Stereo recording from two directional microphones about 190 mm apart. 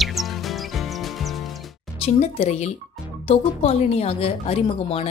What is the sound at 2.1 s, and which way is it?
A woman's voice, 35° left (ahead or behind).